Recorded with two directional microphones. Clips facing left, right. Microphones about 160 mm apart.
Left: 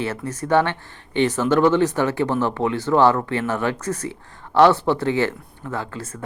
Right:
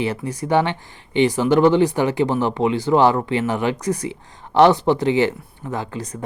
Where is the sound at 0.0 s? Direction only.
15° right (ahead or behind).